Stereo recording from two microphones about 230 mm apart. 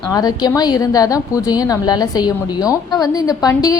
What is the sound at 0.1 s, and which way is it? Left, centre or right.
A woman's voice, centre.